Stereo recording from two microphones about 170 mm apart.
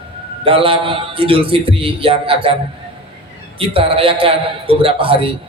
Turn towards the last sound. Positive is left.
turn(degrees=-30)  # may be behind; listen again after turning